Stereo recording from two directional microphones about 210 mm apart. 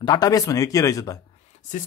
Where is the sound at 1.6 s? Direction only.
35° left (ahead or behind).